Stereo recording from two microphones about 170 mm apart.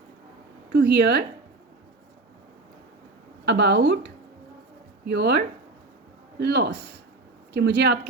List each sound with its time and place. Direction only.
0.7 s speech: 80° right
3.4 s speech: 80° right
5.0 s speech: 75° right (ahead or behind)
6.4 s speech: 75° right (ahead or behind)